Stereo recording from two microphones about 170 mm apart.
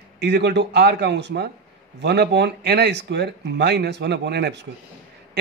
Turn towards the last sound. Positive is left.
turn(degrees=-80)